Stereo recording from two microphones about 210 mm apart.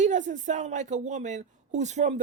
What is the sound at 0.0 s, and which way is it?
A man's voice, 35° right (ahead or behind).